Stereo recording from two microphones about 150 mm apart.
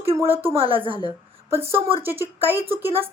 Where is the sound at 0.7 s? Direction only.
35° right (ahead or behind).